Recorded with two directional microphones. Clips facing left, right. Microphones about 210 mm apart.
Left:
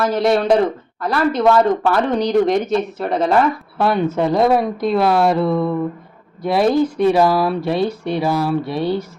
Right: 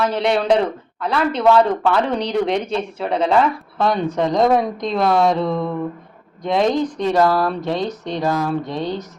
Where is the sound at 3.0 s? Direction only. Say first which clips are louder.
Right 1 dB; 5° left (ahead or behind).